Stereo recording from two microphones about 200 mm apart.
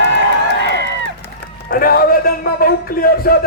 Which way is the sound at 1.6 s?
45° left (ahead or behind).